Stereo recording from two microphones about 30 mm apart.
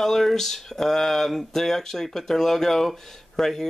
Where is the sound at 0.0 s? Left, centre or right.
Centre.